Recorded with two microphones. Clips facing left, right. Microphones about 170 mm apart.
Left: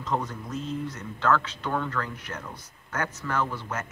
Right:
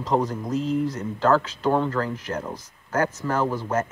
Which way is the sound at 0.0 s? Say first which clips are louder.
Right 7 dB; 35° right (ahead or behind).